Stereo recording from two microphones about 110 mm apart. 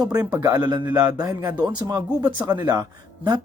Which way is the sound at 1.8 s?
35° right (ahead or behind).